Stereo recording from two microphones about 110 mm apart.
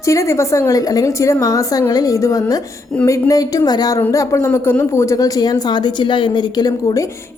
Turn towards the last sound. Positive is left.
turn(degrees=35)  # may be behind; listen again after turning